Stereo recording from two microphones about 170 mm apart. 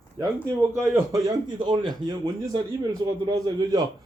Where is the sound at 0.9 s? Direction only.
20° right (ahead or behind).